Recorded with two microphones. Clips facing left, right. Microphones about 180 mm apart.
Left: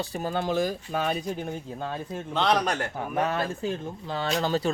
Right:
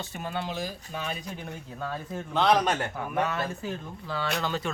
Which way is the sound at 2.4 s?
Centre (ahead or behind).